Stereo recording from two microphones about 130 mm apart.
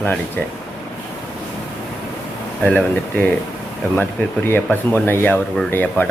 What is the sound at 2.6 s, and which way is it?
Speech, 10° left (ahead or behind).